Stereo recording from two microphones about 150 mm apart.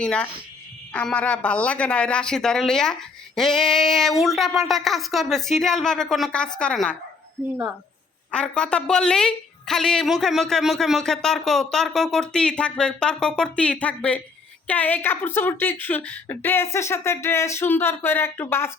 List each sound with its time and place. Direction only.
0.0 s speech: 5° left (ahead or behind)
8.3 s speech: 5° left (ahead or behind)